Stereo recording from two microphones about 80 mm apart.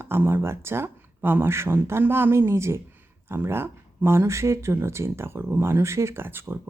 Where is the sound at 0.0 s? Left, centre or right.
Right.